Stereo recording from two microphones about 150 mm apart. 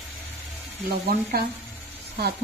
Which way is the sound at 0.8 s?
90° right.